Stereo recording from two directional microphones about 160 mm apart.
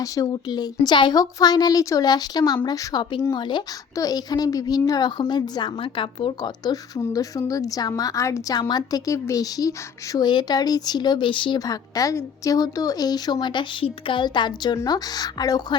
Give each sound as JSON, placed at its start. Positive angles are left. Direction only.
{"t": 0.0, "sound": "a woman's voice", "side_deg": 25}